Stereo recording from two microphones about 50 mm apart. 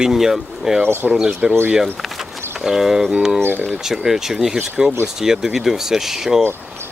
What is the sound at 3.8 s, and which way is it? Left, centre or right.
Speech, centre.